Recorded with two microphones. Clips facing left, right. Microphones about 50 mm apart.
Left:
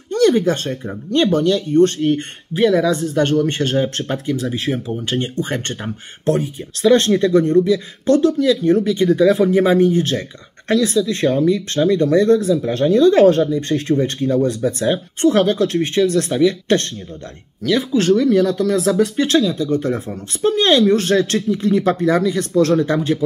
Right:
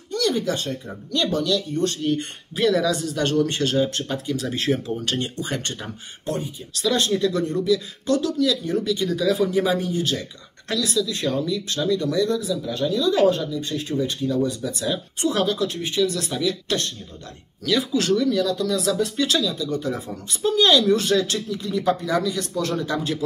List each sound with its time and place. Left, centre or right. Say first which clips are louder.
0.1 s speech: left 8 dB; left
4.5 s speech: left 2 dB; centre
5.4 s speech: left 5 dB; left
6.2 s speech: left 9 dB; left
6.8 s speech: left 8 dB; left
13.6 s speech: left 7 dB; left
17.6 s speech: left 5 dB; left